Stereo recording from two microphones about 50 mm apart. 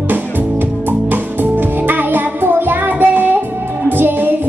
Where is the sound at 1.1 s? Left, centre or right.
Right.